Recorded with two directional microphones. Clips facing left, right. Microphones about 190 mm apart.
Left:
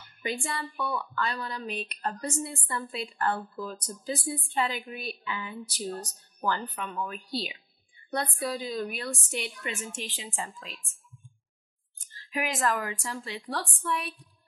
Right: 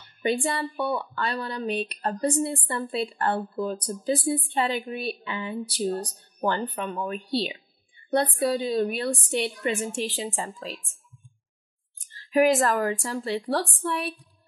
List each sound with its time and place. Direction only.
0.2 s a woman's voice: 30° right (ahead or behind)
12.3 s a woman's voice: 40° right (ahead or behind)